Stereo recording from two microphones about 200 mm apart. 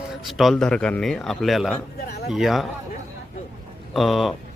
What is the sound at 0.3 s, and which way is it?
Speech, centre (ahead or behind).